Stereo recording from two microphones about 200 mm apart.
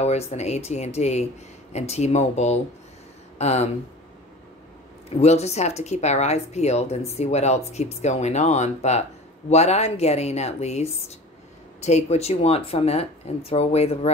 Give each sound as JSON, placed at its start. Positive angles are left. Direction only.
{"t": 0.0, "sound": "speech", "side_deg": 30}
{"t": 5.1, "sound": "speech", "side_deg": 35}